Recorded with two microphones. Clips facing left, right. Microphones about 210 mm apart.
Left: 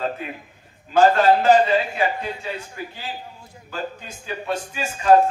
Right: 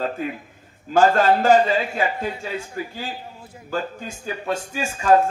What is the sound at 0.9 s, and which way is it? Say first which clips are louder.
A man's voice: left 1 dB; 45° right (ahead or behind).